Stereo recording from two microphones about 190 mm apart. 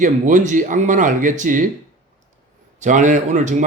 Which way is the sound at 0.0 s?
40° right (ahead or behind).